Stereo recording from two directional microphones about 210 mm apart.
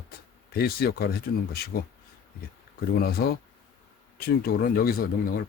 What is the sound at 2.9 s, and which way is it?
Speech, 45° left (ahead or behind).